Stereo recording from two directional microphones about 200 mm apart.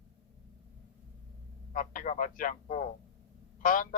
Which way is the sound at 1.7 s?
45° left (ahead or behind).